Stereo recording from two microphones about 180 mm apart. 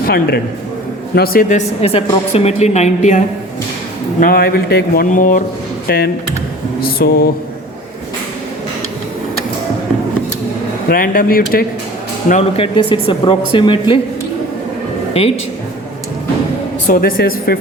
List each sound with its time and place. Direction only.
0.0 s a man's voice: 55° left (ahead or behind); by 3.2 s 40° left (ahead or behind)
4.2 s a man's voice: 55° left (ahead or behind)
5.9 s speech: 60° left (ahead or behind)
10.8 s a man's voice: 55° left (ahead or behind)
12.3 s speech: 35° left (ahead or behind)
15.2 s a woman's voice: 35° left (ahead or behind)
16.9 s speech: 55° left (ahead or behind)